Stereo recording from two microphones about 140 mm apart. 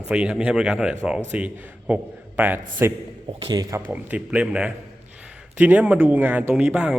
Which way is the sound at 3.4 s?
25° right (ahead or behind).